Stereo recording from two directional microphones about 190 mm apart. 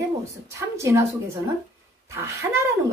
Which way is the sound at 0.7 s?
15° right (ahead or behind).